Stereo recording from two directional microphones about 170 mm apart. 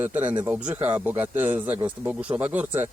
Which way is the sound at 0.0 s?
10° right (ahead or behind).